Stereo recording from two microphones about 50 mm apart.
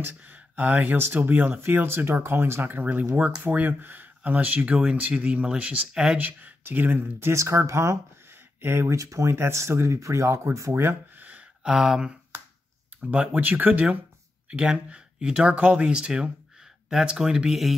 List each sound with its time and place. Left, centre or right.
0.2 s speech: right
0.9 s speech: right
1.6 s speech: right
2.7 s speech: right
6.6 s speech: right
7.3 s speech: right
8.5 s speech: right
8.9 s speech: right
10.7 s speech: right
11.1 s a sound: right
11.6 s speech: centre
13.4 s speech: right
14.6 s speech: centre
15.5 s speech: right; by 17.7 s centre